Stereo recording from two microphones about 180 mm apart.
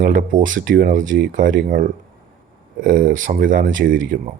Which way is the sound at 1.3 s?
50° right (ahead or behind).